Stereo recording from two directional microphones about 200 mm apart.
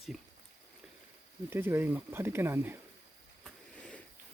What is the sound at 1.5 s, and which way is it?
Speech, 10° right (ahead or behind).